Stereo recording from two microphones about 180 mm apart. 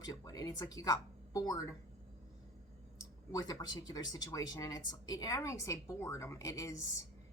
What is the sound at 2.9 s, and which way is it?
A woman's voice, 20° left (ahead or behind).